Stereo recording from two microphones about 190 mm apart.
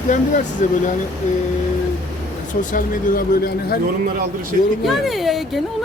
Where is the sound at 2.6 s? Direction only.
45° left (ahead or behind).